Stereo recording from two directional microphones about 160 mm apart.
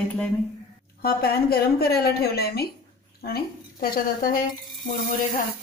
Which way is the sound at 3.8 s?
65° left (ahead or behind).